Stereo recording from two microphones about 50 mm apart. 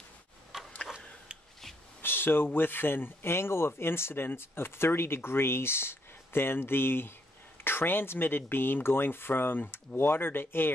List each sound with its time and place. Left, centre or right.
0.5 s a sound: centre
0.8 s tick-tock: centre
2.0 s speech: left